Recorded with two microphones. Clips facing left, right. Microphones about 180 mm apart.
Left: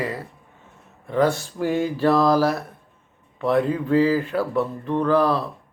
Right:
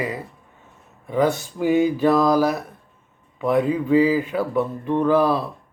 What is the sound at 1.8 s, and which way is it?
Speech, centre (ahead or behind).